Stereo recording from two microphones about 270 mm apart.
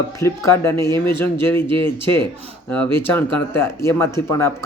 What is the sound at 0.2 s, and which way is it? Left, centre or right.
Speech, centre.